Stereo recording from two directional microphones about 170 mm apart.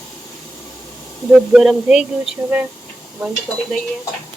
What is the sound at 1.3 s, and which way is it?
Speech, 5° right (ahead or behind).